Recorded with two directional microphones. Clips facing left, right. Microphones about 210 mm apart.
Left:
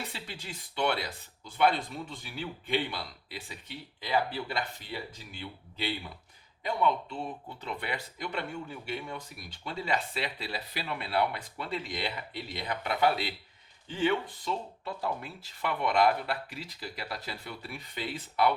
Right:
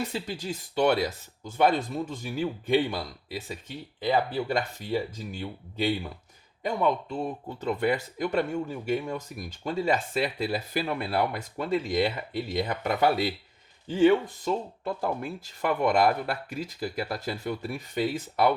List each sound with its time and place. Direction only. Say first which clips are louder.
0.1 s speech: right 10 dB; 45° right (ahead or behind)